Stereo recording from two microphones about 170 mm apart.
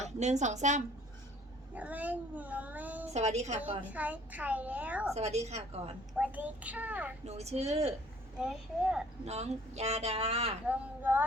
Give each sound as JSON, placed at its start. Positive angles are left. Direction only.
{"t": 0.0, "sound": "a woman's voice", "side_deg": -45}
{"t": 1.7, "sound": "speech", "side_deg": -10}
{"t": 3.1, "sound": "speech", "side_deg": -40}
{"t": 3.9, "sound": "a woman's voice", "side_deg": -10}
{"t": 5.1, "sound": "speech", "side_deg": -40}
{"t": 6.1, "sound": "a woman's voice", "side_deg": -10}
{"t": 7.3, "sound": "speech", "side_deg": -40}
{"t": 8.4, "sound": "a child's voice", "side_deg": -5}
{"t": 9.2, "sound": "speech", "side_deg": -40}
{"t": 10.7, "sound": "a woman's voice", "side_deg": -10}